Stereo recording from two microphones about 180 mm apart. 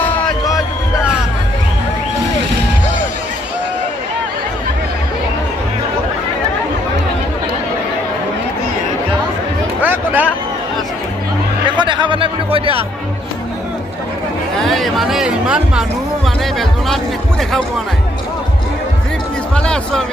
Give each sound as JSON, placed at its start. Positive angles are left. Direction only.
{"t": 9.8, "sound": "music", "side_deg": -10}
{"t": 11.8, "sound": "music", "side_deg": -25}
{"t": 14.6, "sound": "music", "side_deg": 0}
{"t": 19.5, "sound": "music", "side_deg": 5}